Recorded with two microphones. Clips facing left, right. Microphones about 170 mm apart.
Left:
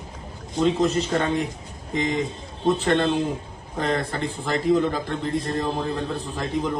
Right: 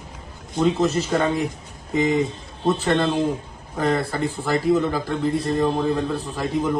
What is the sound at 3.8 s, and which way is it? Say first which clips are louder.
Speech: right 3 dB; 5° right (ahead or behind).